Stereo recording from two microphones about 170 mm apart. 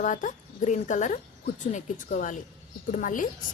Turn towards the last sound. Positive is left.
turn(degrees=50)  # may be behind; listen again after turning